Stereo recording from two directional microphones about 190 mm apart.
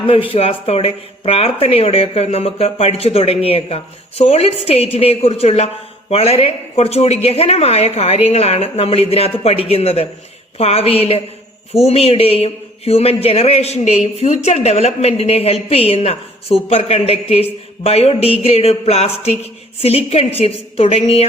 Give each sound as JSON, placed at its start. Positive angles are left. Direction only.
{"t": 0.1, "sound": "a man's voice", "side_deg": 30}